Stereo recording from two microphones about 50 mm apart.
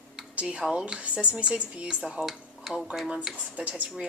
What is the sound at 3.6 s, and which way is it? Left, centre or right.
Speech, right.